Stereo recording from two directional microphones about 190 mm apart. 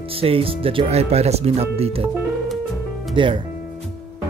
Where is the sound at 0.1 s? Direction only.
30° right (ahead or behind).